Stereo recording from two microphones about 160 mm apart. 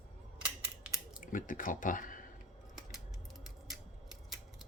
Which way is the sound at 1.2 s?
55° left (ahead or behind).